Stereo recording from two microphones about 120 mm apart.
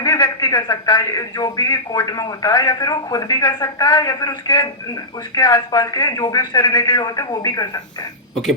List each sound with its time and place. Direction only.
0.0 s speech: 35° left (ahead or behind)